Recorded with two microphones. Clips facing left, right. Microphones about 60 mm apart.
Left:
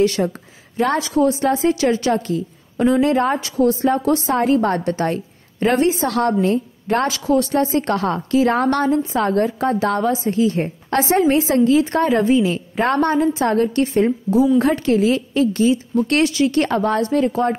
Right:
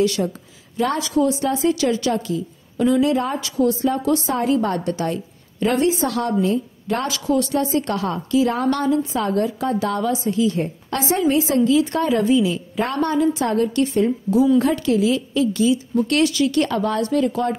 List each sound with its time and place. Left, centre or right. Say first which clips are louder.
0.0 s a woman's voice: left 2 dB; left
6.0 s a woman's voice: left 3 dB; left